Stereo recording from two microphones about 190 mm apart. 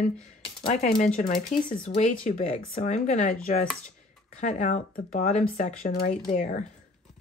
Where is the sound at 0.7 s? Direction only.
50° left (ahead or behind).